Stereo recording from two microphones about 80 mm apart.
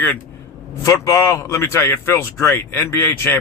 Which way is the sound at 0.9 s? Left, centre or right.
Left.